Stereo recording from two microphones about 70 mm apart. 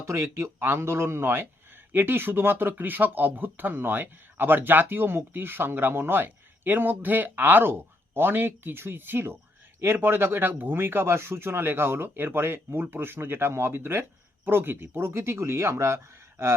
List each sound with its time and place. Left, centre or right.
0.0 s speech: right